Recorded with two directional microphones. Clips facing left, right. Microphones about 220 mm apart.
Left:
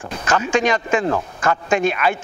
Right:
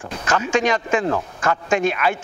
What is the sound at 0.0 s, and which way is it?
Speech, 20° left (ahead or behind).